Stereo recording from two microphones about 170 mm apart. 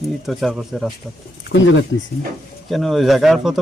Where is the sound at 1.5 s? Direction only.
90° left.